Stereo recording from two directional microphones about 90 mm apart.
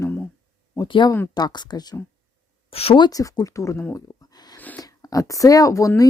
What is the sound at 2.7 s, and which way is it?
Speech, 90° left.